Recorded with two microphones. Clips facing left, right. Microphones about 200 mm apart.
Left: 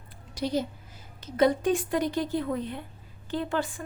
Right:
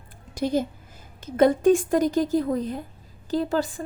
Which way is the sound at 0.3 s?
50° right (ahead or behind).